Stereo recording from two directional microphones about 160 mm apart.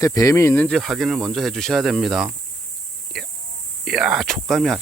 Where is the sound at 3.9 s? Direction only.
5° right (ahead or behind).